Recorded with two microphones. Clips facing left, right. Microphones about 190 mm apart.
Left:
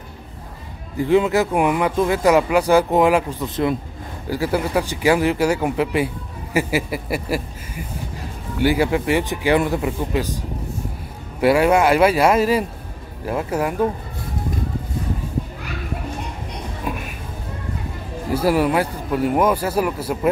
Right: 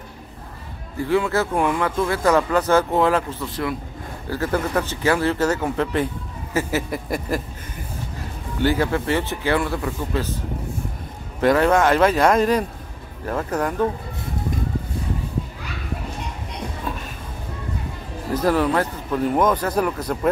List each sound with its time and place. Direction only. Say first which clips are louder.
0.9 s speech: left 4 dB; 20° left (ahead or behind)
11.4 s speech: left 2 dB; 10° left (ahead or behind)
16.8 s a sound: left 5 dB; 10° left (ahead or behind)
18.3 s speech: left 2 dB; 10° left (ahead or behind)